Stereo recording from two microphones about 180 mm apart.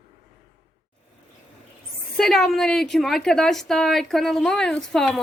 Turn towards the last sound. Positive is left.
turn(degrees=0)  # may be behind; listen again after turning